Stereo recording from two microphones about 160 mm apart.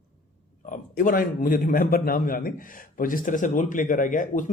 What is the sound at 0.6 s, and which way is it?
A man's voice, 55° left (ahead or behind).